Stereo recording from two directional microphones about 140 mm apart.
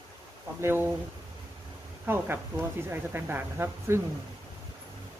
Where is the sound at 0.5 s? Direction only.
15° right (ahead or behind).